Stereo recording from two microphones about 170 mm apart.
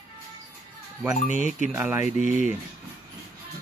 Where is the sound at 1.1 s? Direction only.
45° left (ahead or behind).